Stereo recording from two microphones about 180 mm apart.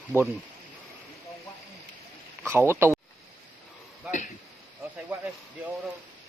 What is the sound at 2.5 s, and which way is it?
Speech, 15° right (ahead or behind).